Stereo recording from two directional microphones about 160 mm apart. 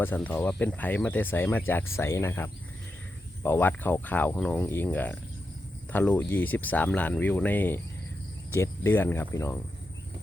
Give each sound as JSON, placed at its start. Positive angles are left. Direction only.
{"t": 0.0, "sound": "speech", "side_deg": 10}